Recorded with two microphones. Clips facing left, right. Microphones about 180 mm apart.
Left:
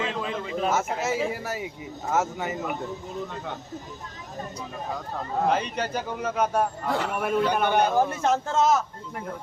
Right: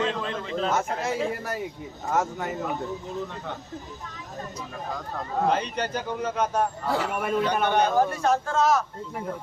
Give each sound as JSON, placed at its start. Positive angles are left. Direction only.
{"t": 0.0, "sound": "a man's voice", "side_deg": 5}
{"t": 5.5, "sound": "a man's voice", "side_deg": 5}
{"t": 8.1, "sound": "a man's voice", "side_deg": 20}